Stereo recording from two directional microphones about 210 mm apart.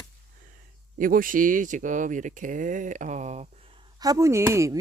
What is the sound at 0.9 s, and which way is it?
Speech, 40° right (ahead or behind).